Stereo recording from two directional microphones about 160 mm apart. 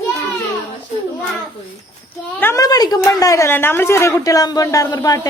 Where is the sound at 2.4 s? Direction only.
20° left (ahead or behind).